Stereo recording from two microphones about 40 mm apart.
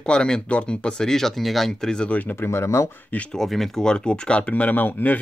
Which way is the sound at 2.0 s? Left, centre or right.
Left.